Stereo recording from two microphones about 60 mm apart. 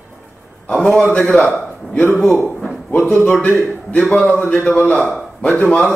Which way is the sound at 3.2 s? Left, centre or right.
Left.